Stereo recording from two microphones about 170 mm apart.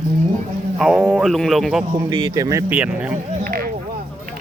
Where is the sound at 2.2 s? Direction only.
20° right (ahead or behind).